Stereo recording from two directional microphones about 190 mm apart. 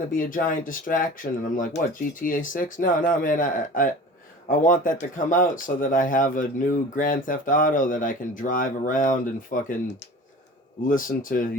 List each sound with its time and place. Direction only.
0.1 s speech: 45° left (ahead or behind)